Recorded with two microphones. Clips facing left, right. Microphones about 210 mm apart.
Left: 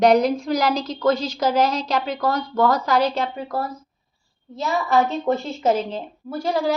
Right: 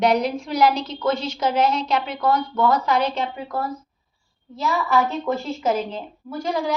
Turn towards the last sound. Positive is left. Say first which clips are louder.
# left 2 dB
turn(degrees=35)  # may be behind; listen again after turning